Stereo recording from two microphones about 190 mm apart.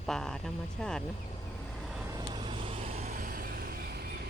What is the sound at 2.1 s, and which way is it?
Vehicle, 25° right (ahead or behind).